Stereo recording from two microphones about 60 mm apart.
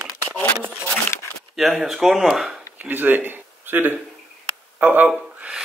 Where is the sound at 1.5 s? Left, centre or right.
Centre.